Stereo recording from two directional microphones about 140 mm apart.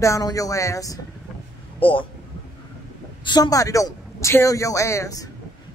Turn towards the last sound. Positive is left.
turn(degrees=25)  # may be behind; listen again after turning